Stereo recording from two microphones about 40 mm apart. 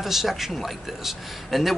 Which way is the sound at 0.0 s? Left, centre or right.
Centre.